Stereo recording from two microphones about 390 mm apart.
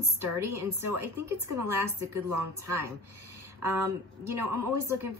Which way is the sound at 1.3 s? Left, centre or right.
Right.